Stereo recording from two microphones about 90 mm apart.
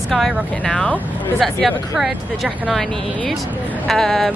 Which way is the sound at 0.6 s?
10° left (ahead or behind).